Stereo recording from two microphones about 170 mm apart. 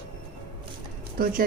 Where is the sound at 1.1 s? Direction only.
55° right (ahead or behind).